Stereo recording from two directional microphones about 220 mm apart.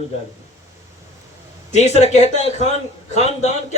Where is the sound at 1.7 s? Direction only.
30° left (ahead or behind).